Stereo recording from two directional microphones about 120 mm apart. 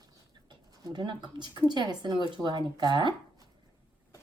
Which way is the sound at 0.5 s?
40° right (ahead or behind).